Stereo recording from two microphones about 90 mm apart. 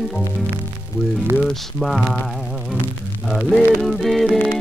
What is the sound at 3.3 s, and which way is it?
Music, 5° left (ahead or behind).